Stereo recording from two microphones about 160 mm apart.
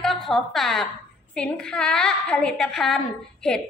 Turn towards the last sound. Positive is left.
turn(degrees=5)  # may be behind; listen again after turning